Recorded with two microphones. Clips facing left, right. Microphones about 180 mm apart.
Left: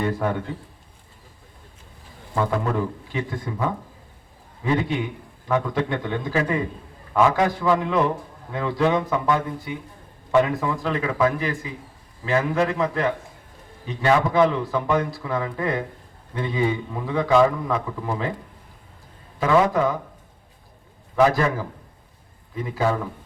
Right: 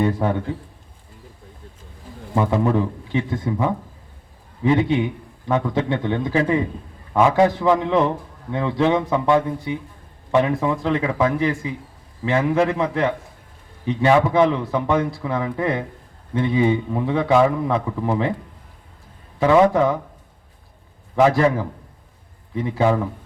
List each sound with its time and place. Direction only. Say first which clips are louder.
0.0 s a man's voice: right 4 dB; 25° right (ahead or behind)
2.3 s a man's voice: right 4 dB; 20° right (ahead or behind)
19.4 s a man's voice: right 4 dB; 25° right (ahead or behind)
21.2 s a man's voice: right 3 dB; 25° right (ahead or behind)
22.5 s a man's voice: right 4 dB; 25° right (ahead or behind)